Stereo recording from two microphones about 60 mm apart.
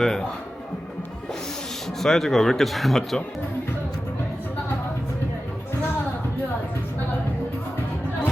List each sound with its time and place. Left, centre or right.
0.0 s a man's voice: centre
2.0 s speech: centre